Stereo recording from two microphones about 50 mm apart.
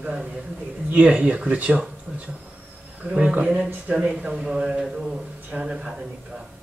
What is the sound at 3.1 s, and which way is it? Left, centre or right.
Speech, right.